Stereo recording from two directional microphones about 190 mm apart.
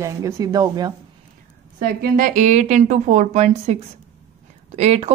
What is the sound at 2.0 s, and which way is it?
A woman's voice, 45° right (ahead or behind).